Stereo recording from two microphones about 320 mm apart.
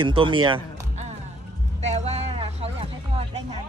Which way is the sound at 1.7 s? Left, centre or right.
Right.